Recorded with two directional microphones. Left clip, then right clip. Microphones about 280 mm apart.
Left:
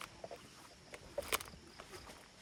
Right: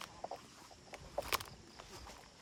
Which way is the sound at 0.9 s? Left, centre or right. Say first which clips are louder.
Right 1 dB; centre.